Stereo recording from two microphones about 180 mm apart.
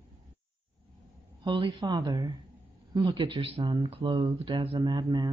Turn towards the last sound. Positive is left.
turn(degrees=-25)  # may be behind; listen again after turning